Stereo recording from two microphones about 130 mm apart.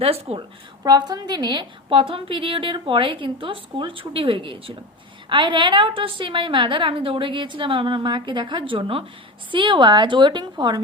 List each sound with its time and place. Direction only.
0.0 s a woman's voice: 50° right (ahead or behind)
0.9 s a woman's voice: 30° right (ahead or behind)